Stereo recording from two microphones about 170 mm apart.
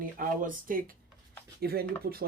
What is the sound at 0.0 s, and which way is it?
Speech, 55° right (ahead or behind).